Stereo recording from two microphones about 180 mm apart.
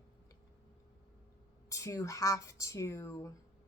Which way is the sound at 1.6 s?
20° left (ahead or behind).